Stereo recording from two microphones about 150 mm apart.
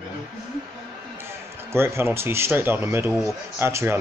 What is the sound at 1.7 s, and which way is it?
Speech, 15° right (ahead or behind).